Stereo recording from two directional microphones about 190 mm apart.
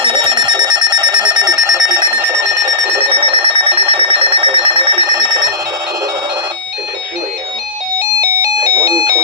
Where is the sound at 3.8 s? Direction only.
30° right (ahead or behind).